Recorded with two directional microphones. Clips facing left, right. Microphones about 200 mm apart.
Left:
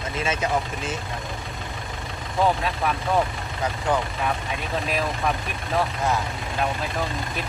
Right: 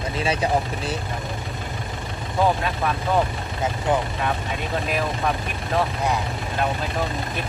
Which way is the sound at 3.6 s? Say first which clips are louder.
Right 2 dB; 20° right (ahead or behind).